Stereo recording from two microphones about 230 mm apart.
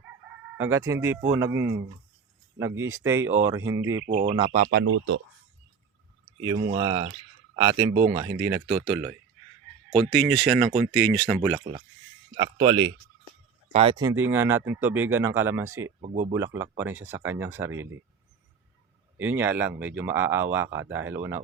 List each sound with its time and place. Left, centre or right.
0.5 s speech: centre
4.0 s speech: right
6.4 s speech: centre
10.1 s speech: centre
12.4 s speech: centre
16.0 s speech: right
16.3 s speech: centre
19.1 s speech: centre